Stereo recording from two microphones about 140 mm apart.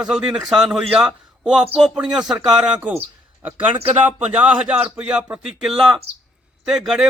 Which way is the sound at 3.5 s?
45° right (ahead or behind).